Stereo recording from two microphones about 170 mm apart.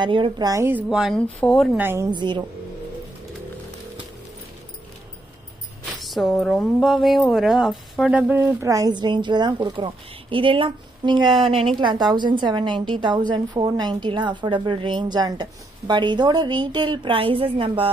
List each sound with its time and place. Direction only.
0.0 s a woman's voice: 30° right (ahead or behind)
0.8 s speech: centre (ahead or behind)
1.8 s speech: 15° right (ahead or behind)
2.0 s a woman's voice: 25° right (ahead or behind)
5.9 s a woman's voice: centre (ahead or behind); by 17.9 s 30° right (ahead or behind)